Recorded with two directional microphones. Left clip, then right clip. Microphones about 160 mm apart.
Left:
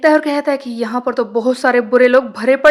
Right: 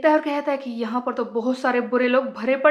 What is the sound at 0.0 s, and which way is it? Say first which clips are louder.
A woman's voice: left 7 dB; 35° left (ahead or behind).